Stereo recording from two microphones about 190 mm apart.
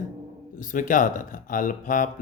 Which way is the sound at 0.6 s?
45° left (ahead or behind).